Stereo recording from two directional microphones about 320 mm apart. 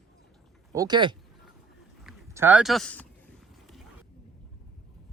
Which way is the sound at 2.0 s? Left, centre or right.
Centre.